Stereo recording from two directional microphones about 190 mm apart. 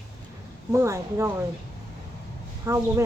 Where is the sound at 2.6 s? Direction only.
15° right (ahead or behind).